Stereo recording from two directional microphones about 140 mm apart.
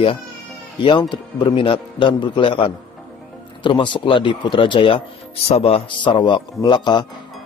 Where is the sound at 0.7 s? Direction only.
35° left (ahead or behind).